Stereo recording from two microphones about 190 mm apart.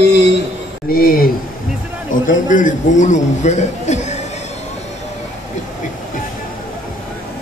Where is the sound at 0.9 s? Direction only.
50° left (ahead or behind).